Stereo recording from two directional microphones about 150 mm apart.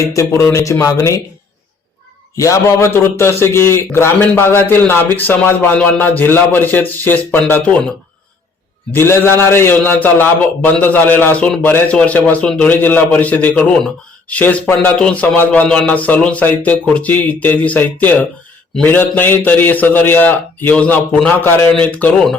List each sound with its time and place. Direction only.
0.0 s speech: 20° left (ahead or behind)
2.4 s a man's voice: 20° left (ahead or behind)
8.9 s a man's voice: 15° left (ahead or behind)